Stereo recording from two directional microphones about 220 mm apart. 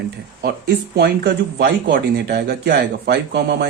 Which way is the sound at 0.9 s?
45° right (ahead or behind).